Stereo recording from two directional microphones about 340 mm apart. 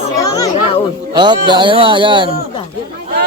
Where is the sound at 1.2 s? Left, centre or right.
Centre.